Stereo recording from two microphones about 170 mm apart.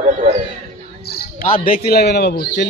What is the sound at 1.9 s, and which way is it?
Speech, 70° left (ahead or behind).